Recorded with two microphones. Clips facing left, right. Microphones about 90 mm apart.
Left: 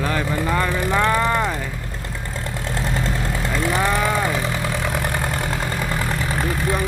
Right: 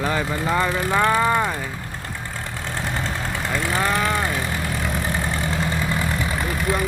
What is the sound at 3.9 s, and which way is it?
Speech, 5° left (ahead or behind).